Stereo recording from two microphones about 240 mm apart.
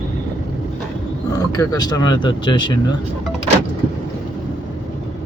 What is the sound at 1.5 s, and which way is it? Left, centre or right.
Speech, centre.